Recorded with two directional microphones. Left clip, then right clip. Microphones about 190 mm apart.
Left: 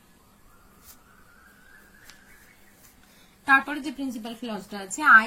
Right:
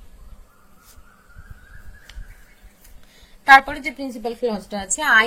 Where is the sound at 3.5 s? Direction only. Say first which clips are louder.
Right 9 dB; 55° right (ahead or behind).